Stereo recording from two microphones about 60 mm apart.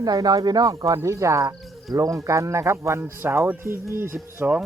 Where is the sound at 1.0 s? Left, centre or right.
Right.